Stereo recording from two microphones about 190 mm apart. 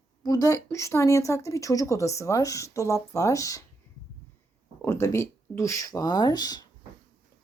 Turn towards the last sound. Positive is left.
turn(degrees=20)  # may be behind; listen again after turning